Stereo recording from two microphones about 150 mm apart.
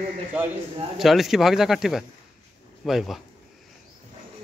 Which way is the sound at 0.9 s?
Centre (ahead or behind).